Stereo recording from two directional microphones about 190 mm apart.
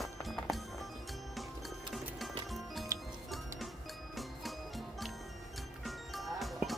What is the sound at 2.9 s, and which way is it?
Music, 15° right (ahead or behind).